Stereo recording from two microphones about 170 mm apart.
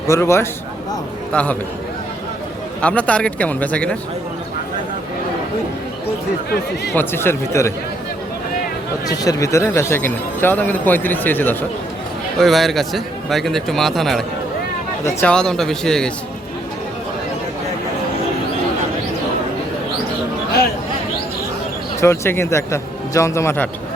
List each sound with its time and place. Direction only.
0.1 s speech: 15° left (ahead or behind)
2.8 s speech: 5° left (ahead or behind)
6.9 s speech: 10° left (ahead or behind)
9.0 s speech: 20° left (ahead or behind)
12.4 s a man's voice: centre (ahead or behind)
22.0 s speech: 15° left (ahead or behind)